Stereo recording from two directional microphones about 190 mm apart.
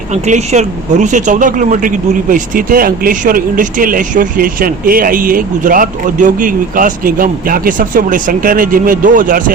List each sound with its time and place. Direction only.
0.1 s speech: 35° right (ahead or behind)